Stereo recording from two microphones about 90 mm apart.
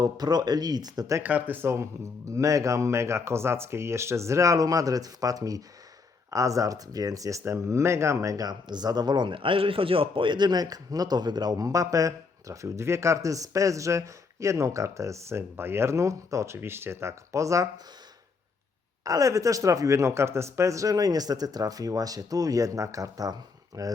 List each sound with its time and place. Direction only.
0.0 s speech: 50° right (ahead or behind)
1.2 s speech: 20° right (ahead or behind); by 17.7 s 35° right (ahead or behind)
19.0 s speech: 40° right (ahead or behind)